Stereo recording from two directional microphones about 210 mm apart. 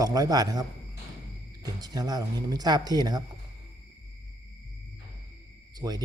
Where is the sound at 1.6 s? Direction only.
20° right (ahead or behind).